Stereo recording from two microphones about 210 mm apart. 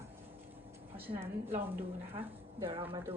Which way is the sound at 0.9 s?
10° right (ahead or behind).